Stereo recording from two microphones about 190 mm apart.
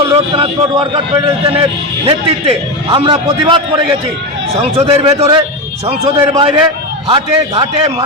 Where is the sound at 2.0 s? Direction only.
25° right (ahead or behind).